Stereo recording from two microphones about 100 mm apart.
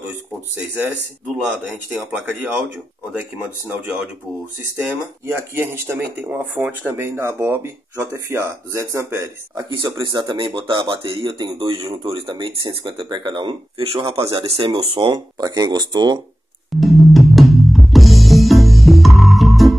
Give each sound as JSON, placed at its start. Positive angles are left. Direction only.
{"t": 2.0, "sound": "speech", "side_deg": -20}
{"t": 9.7, "sound": "speech", "side_deg": -50}
{"t": 14.3, "sound": "speech", "side_deg": -75}
{"t": 15.1, "sound": "speech", "side_deg": -40}
{"t": 16.8, "sound": "music", "side_deg": 0}